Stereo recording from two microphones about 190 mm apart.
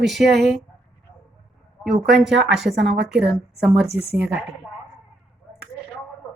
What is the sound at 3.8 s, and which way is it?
Speech, 30° right (ahead or behind).